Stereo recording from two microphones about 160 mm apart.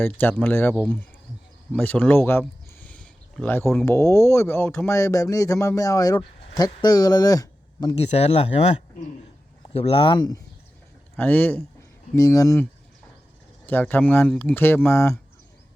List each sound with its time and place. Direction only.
0.0 s speech: 10° left (ahead or behind)
2.8 s a sound: 10° left (ahead or behind)
3.8 s speech: 20° left (ahead or behind)
7.9 s speech: 40° left (ahead or behind)
11.2 s speech: 10° left (ahead or behind)
13.7 s speech: 10° left (ahead or behind)